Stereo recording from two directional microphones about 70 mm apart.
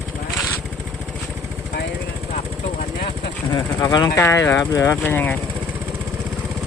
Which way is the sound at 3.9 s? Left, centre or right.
Left.